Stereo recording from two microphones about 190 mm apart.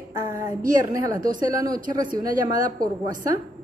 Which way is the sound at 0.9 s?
15° right (ahead or behind).